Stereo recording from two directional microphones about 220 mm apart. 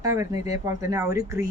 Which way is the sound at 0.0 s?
15° right (ahead or behind).